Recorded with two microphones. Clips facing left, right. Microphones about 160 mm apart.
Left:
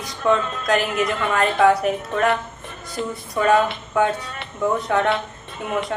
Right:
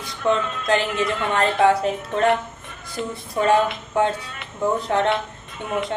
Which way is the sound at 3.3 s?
30° right (ahead or behind).